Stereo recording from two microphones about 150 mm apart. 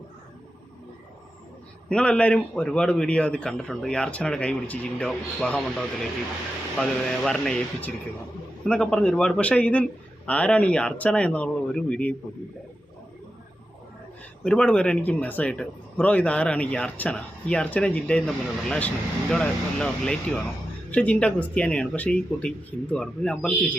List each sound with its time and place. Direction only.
1.9 s speech: 5° left (ahead or behind)
7.3 s speech: 5° left (ahead or behind)
14.4 s speech: 5° left (ahead or behind)